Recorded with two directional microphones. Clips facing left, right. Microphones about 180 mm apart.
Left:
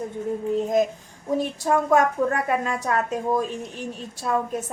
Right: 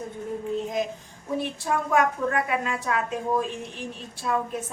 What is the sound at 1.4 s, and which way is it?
A woman's voice, 40° left (ahead or behind).